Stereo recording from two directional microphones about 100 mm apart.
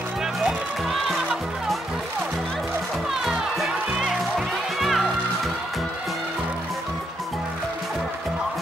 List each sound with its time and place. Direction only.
0.2 s music: 5° right (ahead or behind)
3.3 s music: centre (ahead or behind)